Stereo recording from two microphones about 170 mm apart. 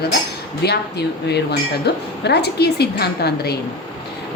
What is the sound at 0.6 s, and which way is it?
A woman's voice, 75° left (ahead or behind).